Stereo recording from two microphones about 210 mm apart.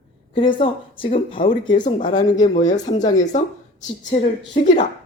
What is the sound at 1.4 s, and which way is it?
Speech, 40° left (ahead or behind).